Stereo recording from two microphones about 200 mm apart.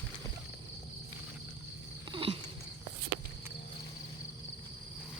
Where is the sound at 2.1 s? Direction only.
25° right (ahead or behind).